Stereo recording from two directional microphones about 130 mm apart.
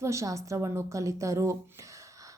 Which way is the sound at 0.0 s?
25° right (ahead or behind).